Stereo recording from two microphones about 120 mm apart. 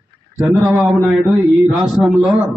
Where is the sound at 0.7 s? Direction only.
Centre (ahead or behind).